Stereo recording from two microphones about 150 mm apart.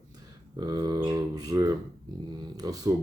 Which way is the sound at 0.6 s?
25° right (ahead or behind).